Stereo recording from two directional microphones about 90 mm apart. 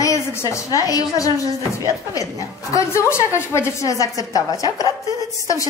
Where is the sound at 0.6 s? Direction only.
40° left (ahead or behind).